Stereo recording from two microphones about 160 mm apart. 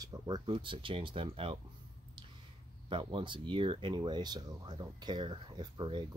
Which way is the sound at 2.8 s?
30° right (ahead or behind).